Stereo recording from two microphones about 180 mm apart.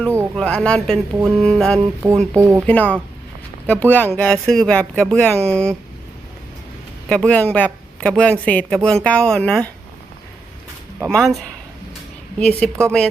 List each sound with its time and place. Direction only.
0.3 s speech: 5° left (ahead or behind)
2.3 s speech: 15° right (ahead or behind)
2.6 s a woman's voice: 10° left (ahead or behind)
7.1 s a woman's voice: 5° left (ahead or behind)
11.0 s speech: centre (ahead or behind)
12.4 s a woman's voice: 5° left (ahead or behind)